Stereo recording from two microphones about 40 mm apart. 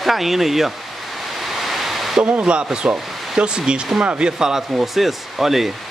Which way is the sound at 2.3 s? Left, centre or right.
Right.